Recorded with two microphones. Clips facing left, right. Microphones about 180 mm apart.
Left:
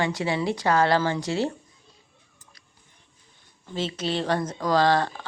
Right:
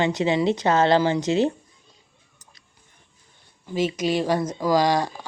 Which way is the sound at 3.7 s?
10° right (ahead or behind).